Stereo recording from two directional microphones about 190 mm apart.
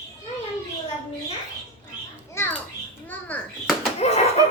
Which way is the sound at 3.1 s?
10° left (ahead or behind).